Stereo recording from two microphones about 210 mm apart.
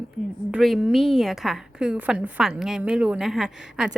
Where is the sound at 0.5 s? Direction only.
Centre (ahead or behind).